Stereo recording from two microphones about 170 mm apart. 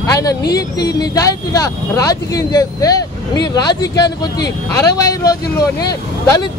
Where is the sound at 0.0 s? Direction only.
20° left (ahead or behind).